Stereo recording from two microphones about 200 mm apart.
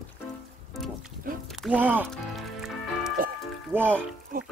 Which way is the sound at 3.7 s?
10° right (ahead or behind).